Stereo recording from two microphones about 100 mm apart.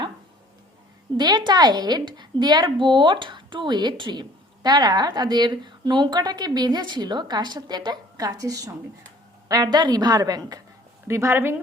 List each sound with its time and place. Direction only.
1.1 s a woman's voice: 45° right (ahead or behind)
11.1 s speech: 25° right (ahead or behind)